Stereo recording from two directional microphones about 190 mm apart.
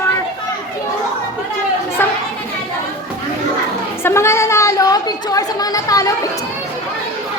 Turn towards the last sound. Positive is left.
turn(degrees=20)  # may be behind; listen again after turning